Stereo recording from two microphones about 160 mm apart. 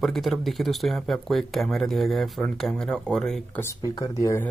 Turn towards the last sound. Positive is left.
turn(degrees=20)  # may be behind; listen again after turning